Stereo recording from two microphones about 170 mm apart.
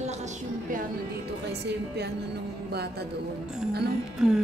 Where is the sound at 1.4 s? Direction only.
85° right.